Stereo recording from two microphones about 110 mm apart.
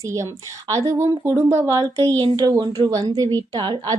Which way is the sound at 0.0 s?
30° right (ahead or behind).